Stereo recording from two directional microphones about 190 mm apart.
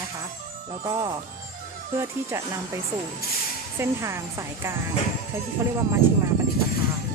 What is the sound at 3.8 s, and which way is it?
Speech, 15° right (ahead or behind).